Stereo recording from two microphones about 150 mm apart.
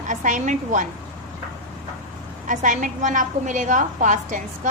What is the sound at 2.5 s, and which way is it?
A woman's voice, 60° right (ahead or behind).